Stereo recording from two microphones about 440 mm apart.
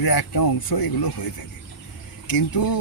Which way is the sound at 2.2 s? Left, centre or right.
Left.